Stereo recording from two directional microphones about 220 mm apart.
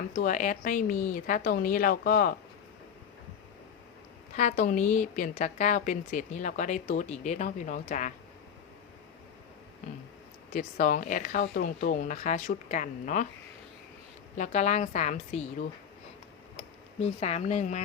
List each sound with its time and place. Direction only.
0.2 s a woman's voice: 35° left (ahead or behind)
4.4 s a woman's voice: 35° left (ahead or behind)
10.5 s a woman's voice: 40° left (ahead or behind)
14.3 s a woman's voice: 35° left (ahead or behind)
16.6 s speech: 25° left (ahead or behind)